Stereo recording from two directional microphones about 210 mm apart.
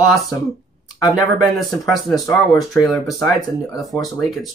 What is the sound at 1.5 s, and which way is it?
Speech, centre (ahead or behind).